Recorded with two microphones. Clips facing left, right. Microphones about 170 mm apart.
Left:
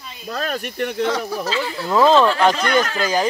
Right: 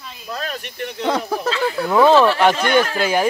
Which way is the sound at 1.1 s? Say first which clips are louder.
Right 2 dB; 55° right (ahead or behind).